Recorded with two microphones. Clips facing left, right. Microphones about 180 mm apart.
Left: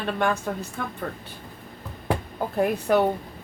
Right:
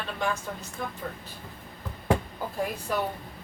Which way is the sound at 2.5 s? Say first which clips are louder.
Left 9 dB; 65° left (ahead or behind).